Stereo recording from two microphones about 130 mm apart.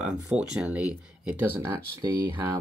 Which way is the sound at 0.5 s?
5° right (ahead or behind).